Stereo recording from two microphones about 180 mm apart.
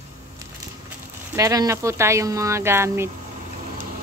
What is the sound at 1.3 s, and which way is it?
Speech, 20° right (ahead or behind).